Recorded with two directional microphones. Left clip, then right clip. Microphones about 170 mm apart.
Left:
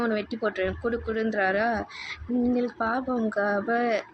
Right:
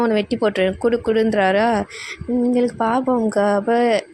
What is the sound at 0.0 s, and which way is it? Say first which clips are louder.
A woman's voice: right 9 dB; 50° right (ahead or behind).